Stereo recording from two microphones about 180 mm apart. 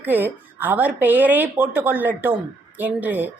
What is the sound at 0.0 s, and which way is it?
A woman's voice, 10° right (ahead or behind).